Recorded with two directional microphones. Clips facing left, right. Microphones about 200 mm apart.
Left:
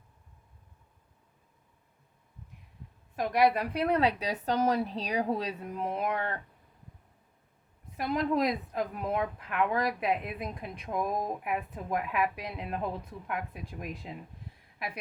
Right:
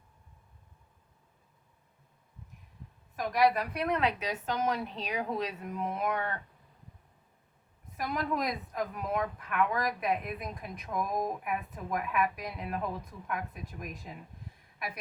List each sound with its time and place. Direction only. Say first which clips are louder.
3.2 s a woman's voice: left 1 dB; 30° left (ahead or behind)
7.9 s speech: left 4 dB; 30° left (ahead or behind)